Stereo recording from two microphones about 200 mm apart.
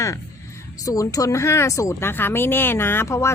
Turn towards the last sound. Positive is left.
turn(degrees=15)  # may be behind; listen again after turning